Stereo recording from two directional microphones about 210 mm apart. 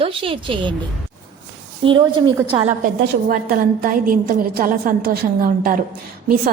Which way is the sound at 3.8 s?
40° right (ahead or behind).